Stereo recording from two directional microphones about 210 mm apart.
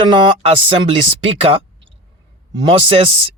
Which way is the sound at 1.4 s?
25° right (ahead or behind).